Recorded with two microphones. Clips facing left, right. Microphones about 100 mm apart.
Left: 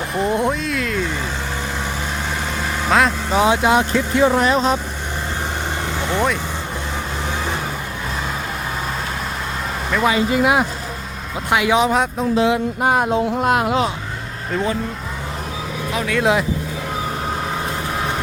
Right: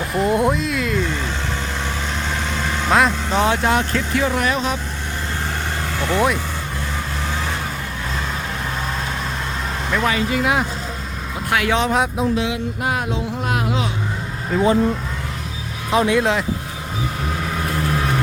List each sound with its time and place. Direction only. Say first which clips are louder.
0.1 s speech: right 2 dB; centre (ahead or behind)
2.8 s speech: even; centre (ahead or behind); by 4.8 s 35° left (ahead or behind)
6.1 s speech: right 2 dB; 5° right (ahead or behind)
10.0 s speech: left 4 dB; 20° left (ahead or behind); by 12.3 s centre (ahead or behind)
12.4 s music: left 6 dB; 40° left (ahead or behind); by 13.8 s 60° left (ahead or behind)
14.5 s speech: right 4 dB; 5° right (ahead or behind)
15.9 s speech: right 7 dB; 25° right (ahead or behind)